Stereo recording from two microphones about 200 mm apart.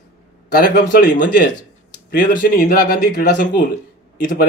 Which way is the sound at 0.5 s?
50° left (ahead or behind).